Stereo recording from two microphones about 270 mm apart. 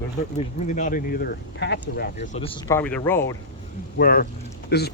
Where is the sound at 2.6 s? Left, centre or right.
Centre.